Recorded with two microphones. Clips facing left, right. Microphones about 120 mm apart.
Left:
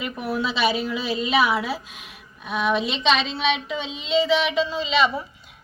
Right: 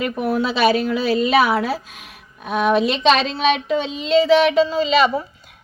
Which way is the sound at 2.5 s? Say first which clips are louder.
Right 6 dB; 45° right (ahead or behind).